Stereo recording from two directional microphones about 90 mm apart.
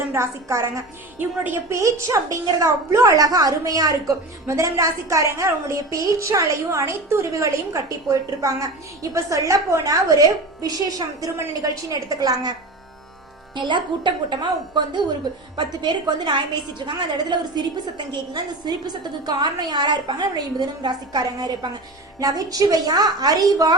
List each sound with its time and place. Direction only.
0.1 s a woman's voice: 35° right (ahead or behind)
1.2 s a woman's voice: 20° right (ahead or behind)
1.8 s a woman's voice: 35° right (ahead or behind)
13.6 s a woman's voice: 60° right (ahead or behind)
15.5 s a woman's voice: 60° right (ahead or behind); by 23.7 s 40° right (ahead or behind)